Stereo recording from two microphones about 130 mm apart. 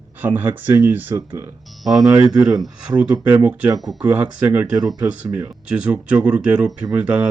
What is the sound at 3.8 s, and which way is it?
Speech, centre (ahead or behind).